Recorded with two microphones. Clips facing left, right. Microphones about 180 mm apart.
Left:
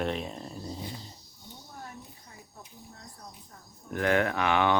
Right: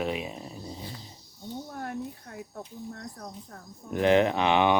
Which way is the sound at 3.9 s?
20° right (ahead or behind).